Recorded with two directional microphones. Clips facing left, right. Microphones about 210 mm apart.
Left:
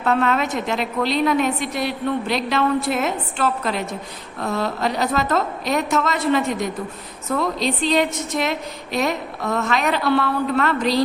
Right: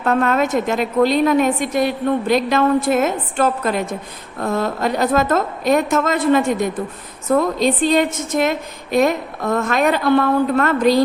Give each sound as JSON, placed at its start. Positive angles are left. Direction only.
{"t": 0.0, "sound": "a woman's voice", "side_deg": -50}